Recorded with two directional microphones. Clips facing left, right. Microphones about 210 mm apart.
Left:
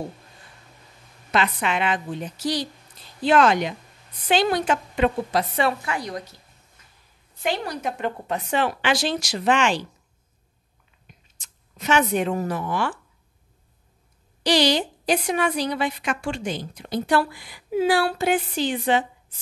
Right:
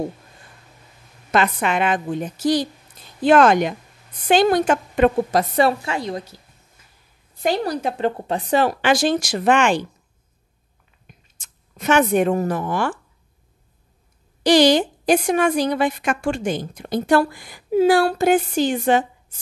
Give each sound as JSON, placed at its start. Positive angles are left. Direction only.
{"t": 1.3, "sound": "a woman's voice", "side_deg": -50}
{"t": 5.9, "sound": "a woman's voice", "side_deg": -25}
{"t": 7.4, "sound": "a woman's voice", "side_deg": -35}
{"t": 11.1, "sound": "a sound", "side_deg": -50}
{"t": 14.4, "sound": "a woman's voice", "side_deg": -50}